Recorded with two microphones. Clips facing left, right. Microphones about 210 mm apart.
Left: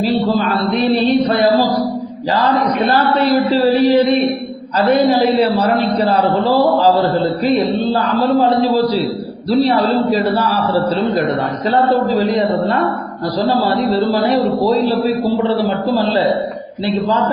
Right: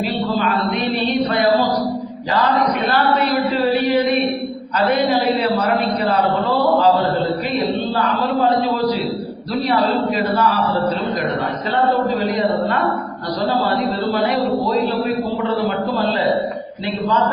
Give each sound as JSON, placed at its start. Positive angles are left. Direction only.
{"t": 0.0, "sound": "chant", "side_deg": 35}
{"t": 2.6, "sound": "a woman's voice", "side_deg": 0}
{"t": 5.5, "sound": "a man's voice", "side_deg": 35}
{"t": 8.4, "sound": "a man's voice", "side_deg": 35}
{"t": 14.3, "sound": "a woman's voice", "side_deg": 0}
{"t": 15.4, "sound": "a man's voice", "side_deg": 30}